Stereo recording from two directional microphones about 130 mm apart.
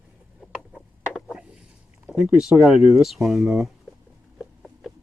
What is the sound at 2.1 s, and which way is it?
Speech, 5° right (ahead or behind).